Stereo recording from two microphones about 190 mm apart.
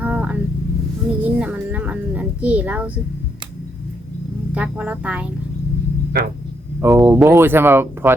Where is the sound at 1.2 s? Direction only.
10° right (ahead or behind).